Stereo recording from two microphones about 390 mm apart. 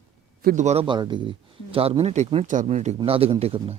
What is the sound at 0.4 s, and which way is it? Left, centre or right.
Speech, centre.